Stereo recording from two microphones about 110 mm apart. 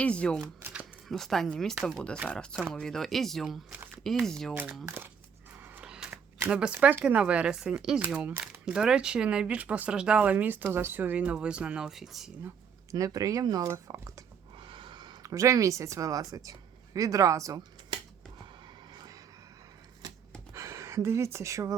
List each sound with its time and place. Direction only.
0.0 s speech: 10° left (ahead or behind)
0.6 s typewriter: 15° right (ahead or behind)
1.0 s speech: 5° left (ahead or behind)
4.9 s speech: 20° right (ahead or behind)
5.6 s a sound: 15° right (ahead or behind)
6.5 s speech: 10° right (ahead or behind)
8.0 s speech: 15° right (ahead or behind)
12.9 s speech: 30° right (ahead or behind)
13.7 s speech: 25° right (ahead or behind)
14.6 s a sound: 50° right (ahead or behind)
15.2 s a woman's voice: 30° right (ahead or behind)
20.5 s speech: 25° right (ahead or behind)